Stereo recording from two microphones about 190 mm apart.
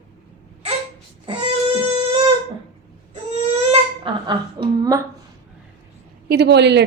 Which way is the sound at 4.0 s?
25° right (ahead or behind).